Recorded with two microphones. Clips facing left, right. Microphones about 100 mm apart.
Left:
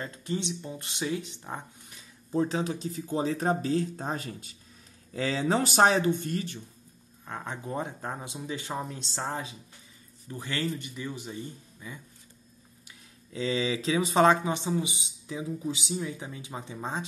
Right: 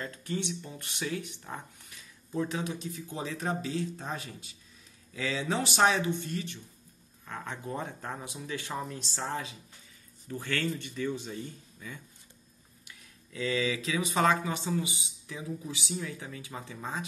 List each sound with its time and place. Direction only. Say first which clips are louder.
0.0 s speech: left 2 dB; 25° left (ahead or behind)
7.2 s speech: left 2 dB; 20° left (ahead or behind)
12.8 s speech: right 2 dB; 25° left (ahead or behind)